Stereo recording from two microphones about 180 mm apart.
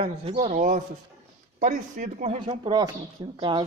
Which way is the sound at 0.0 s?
30° right (ahead or behind).